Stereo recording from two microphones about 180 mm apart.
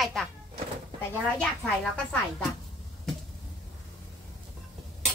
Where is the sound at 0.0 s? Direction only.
Centre (ahead or behind).